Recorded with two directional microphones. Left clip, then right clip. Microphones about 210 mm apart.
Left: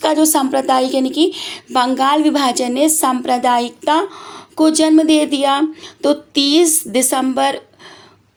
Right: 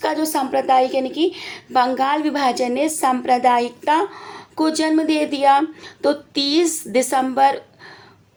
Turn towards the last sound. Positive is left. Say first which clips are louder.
# even
turn(degrees=30)  # may be behind; listen again after turning